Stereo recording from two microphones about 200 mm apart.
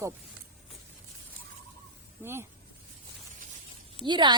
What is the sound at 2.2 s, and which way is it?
Speech, 10° right (ahead or behind).